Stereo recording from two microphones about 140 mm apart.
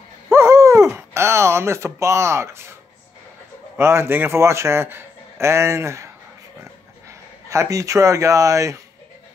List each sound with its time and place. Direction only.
0.3 s a sound: 20° right (ahead or behind)
3.7 s a man's voice: 20° right (ahead or behind)
7.4 s a man's voice: 20° right (ahead or behind)